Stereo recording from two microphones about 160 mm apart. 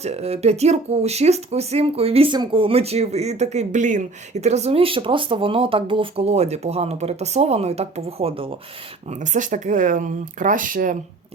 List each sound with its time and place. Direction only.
0.0 s speech: 40° right (ahead or behind)
9.0 s speech: 50° right (ahead or behind)